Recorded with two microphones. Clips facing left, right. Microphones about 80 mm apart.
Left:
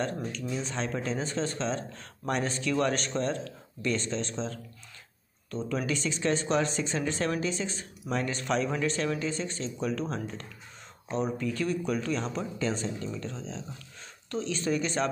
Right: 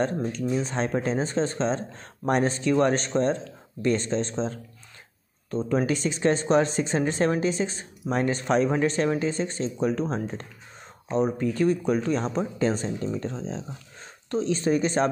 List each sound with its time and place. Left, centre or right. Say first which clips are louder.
0.0 s speech: right 6 dB; right